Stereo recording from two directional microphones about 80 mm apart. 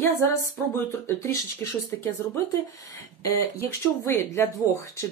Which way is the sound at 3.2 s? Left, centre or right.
Left.